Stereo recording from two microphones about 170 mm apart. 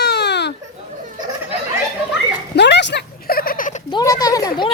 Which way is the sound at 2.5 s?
90° left.